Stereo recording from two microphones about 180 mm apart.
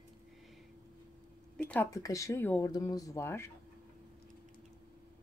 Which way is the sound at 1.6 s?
5° left (ahead or behind).